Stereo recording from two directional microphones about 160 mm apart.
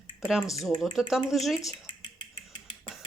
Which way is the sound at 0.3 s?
Centre (ahead or behind).